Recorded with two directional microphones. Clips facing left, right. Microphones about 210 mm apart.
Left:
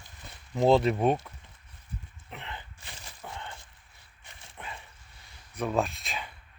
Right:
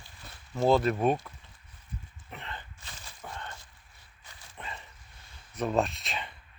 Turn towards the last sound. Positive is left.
turn(degrees=0)  # may be behind; listen again after turning